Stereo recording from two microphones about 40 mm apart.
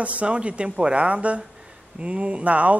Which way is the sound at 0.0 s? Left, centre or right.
Right.